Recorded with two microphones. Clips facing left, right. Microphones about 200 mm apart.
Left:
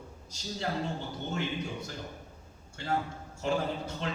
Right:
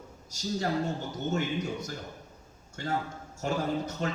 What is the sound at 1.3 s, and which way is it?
Speech, 45° right (ahead or behind).